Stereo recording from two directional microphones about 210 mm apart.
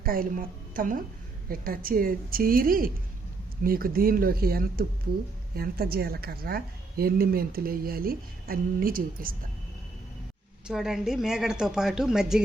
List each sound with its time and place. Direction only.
0.0 s a woman's voice: 45° right (ahead or behind)
10.7 s a woman's voice: centre (ahead or behind)